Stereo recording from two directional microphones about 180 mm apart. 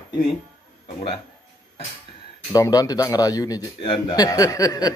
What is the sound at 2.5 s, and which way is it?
A man's voice, 20° left (ahead or behind).